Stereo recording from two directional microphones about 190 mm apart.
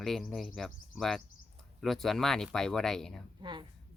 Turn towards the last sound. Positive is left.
turn(degrees=-25)  # may be behind; listen again after turning